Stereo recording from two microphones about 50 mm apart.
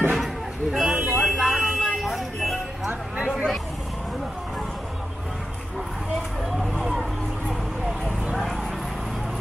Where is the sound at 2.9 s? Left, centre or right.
Right.